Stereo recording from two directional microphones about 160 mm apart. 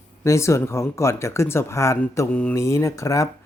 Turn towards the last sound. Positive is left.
turn(degrees=20)  # may be behind; listen again after turning